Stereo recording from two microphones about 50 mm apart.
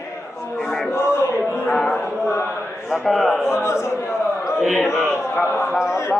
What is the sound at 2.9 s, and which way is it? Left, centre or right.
Speech, centre.